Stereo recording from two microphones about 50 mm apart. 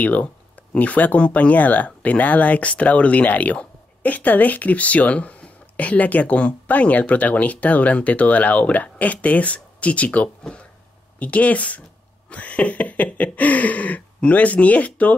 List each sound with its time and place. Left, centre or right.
0.0 s speech: left
10.4 s a sound: left
11.1 s speech: left